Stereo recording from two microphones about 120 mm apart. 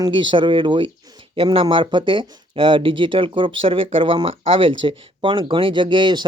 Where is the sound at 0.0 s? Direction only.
40° right (ahead or behind).